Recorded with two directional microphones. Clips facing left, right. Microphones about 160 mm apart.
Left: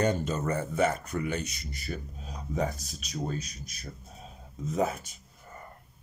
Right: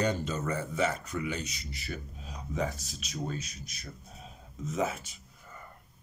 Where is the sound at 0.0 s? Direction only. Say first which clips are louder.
Left 3 dB; 50° left (ahead or behind).